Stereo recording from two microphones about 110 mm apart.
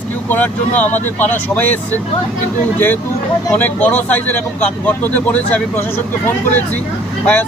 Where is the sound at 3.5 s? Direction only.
15° left (ahead or behind).